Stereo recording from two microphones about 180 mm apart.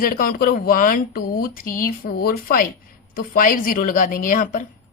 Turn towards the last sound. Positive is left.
turn(degrees=50)  # may be behind; listen again after turning